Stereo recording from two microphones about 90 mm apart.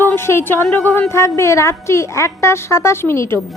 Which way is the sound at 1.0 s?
30° left (ahead or behind).